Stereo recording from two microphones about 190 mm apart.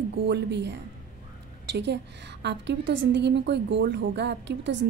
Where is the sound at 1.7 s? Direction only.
65° right (ahead or behind).